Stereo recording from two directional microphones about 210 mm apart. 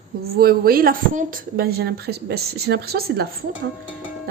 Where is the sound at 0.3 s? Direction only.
45° right (ahead or behind).